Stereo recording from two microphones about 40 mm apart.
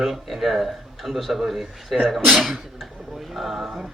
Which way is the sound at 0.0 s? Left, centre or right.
Centre.